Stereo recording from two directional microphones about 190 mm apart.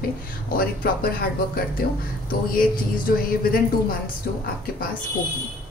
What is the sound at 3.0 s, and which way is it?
Speech, 50° left (ahead or behind).